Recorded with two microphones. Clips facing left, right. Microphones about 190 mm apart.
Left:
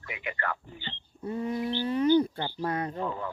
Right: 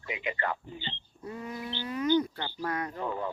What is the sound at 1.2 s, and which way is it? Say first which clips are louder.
Bird: left 7 dB; 30° left (ahead or behind).